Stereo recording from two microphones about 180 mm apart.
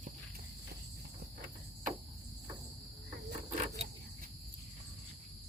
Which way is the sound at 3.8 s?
35° right (ahead or behind).